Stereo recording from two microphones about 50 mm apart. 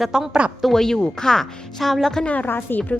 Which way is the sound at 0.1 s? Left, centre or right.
Centre.